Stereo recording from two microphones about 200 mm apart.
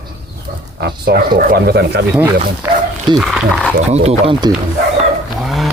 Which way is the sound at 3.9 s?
30° right (ahead or behind).